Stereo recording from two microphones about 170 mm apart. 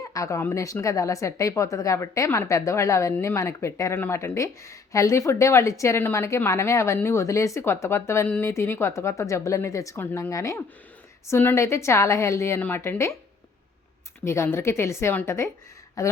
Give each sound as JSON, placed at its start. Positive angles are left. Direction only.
{"t": 0.1, "sound": "a woman's voice", "side_deg": 20}
{"t": 14.3, "sound": "a woman's voice", "side_deg": 15}